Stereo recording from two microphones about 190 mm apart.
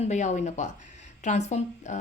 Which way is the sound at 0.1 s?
40° left (ahead or behind).